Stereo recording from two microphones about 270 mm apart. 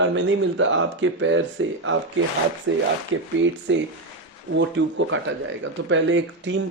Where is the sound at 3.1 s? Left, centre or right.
Right.